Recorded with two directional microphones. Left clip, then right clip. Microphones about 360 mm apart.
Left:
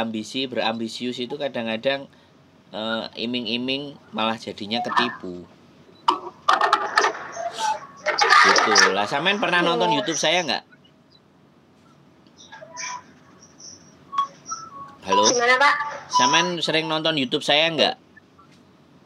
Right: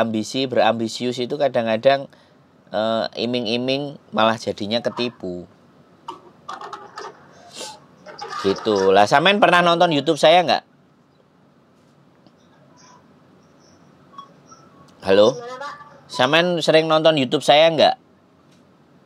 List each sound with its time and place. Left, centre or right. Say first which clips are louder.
0.0 s speech: right 5 dB; right
6.0 s tick-tock: left 15 dB; left
7.5 s music: left 10 dB; right
8.0 s a sound: left 15 dB; left
8.9 s speech: right 8 dB; right
12.4 s a sound: left 19 dB; left
13.7 s a sound: left 14 dB; left
15.0 s music: right 5 dB; right
15.3 s speech: left 15 dB; left
16.2 s speech: right 2 dB; right